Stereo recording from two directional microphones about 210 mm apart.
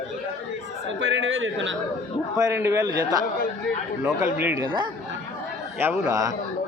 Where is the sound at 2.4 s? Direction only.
15° right (ahead or behind).